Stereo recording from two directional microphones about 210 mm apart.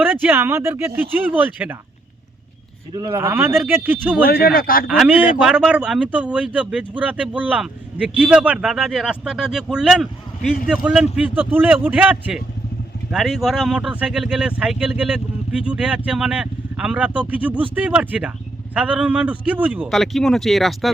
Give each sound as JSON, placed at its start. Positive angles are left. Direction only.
{"t": 0.0, "sound": "a man's voice", "side_deg": -10}
{"t": 2.9, "sound": "a man's voice", "side_deg": -20}
{"t": 4.3, "sound": "speech", "side_deg": 45}
{"t": 4.9, "sound": "a man's voice", "side_deg": -5}